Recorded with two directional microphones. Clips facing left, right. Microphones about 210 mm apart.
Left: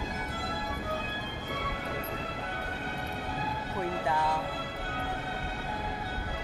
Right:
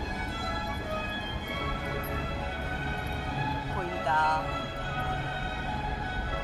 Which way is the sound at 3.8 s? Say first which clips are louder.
Left 2 dB; 10° left (ahead or behind).